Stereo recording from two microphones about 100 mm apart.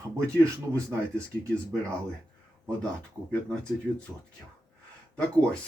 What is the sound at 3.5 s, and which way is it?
Speech, 10° left (ahead or behind).